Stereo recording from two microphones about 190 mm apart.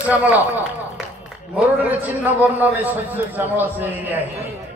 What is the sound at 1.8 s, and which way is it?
A man's voice, 10° right (ahead or behind).